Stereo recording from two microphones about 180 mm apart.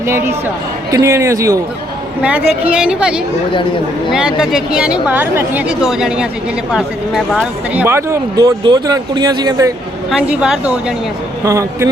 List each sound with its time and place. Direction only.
0.1 s a woman's voice: 15° right (ahead or behind)
2.2 s a woman's voice: 10° right (ahead or behind)
10.1 s a woman's voice: 5° right (ahead or behind)
11.4 s a woman's voice: 15° right (ahead or behind)